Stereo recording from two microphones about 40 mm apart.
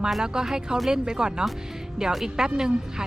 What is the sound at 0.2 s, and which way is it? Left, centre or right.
A woman's voice, centre.